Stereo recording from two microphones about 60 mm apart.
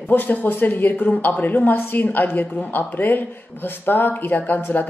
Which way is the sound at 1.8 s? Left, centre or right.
Left.